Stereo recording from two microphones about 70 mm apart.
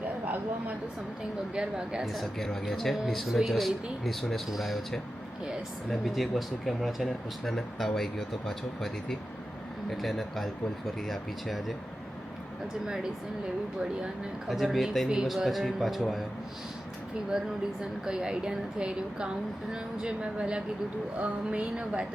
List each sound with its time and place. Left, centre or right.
1.5 s speech: centre
12.8 s a woman's voice: centre
17.3 s a woman's voice: centre